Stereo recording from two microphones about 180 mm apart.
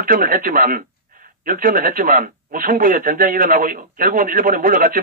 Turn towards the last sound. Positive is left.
turn(degrees=-50)  # may be behind; listen again after turning